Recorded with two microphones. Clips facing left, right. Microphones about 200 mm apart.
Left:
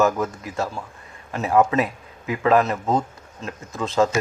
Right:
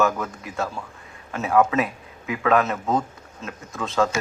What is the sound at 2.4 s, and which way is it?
Speech, 30° left (ahead or behind).